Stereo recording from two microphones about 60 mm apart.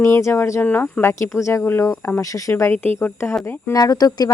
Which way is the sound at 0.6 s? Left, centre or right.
Left.